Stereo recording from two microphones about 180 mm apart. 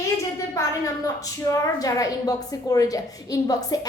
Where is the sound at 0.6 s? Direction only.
15° left (ahead or behind).